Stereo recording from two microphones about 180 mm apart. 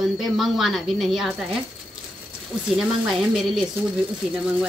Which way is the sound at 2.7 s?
Centre (ahead or behind).